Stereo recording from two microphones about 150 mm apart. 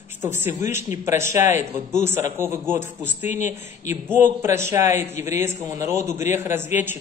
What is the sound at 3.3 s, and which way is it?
Speech, 55° left (ahead or behind).